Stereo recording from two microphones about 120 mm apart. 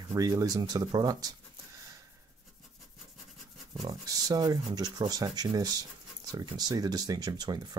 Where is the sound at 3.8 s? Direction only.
30° right (ahead or behind).